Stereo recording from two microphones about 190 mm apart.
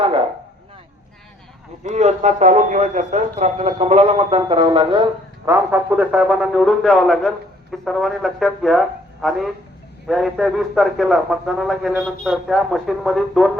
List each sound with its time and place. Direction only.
1.8 s a man's voice: 35° right (ahead or behind)
5.5 s a man's voice: 15° right (ahead or behind)